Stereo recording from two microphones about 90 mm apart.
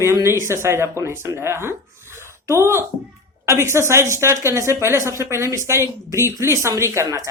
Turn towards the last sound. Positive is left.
turn(degrees=-40)  # may be behind; listen again after turning